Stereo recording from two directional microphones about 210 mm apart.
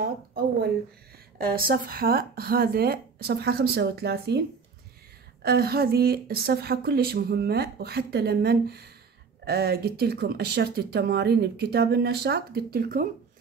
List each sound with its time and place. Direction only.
0.0 s speech: 45° right (ahead or behind)